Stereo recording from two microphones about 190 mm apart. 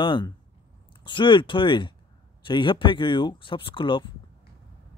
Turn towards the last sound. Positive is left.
turn(degrees=25)  # may be behind; listen again after turning